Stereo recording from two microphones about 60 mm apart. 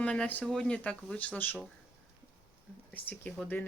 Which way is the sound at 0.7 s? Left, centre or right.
Centre.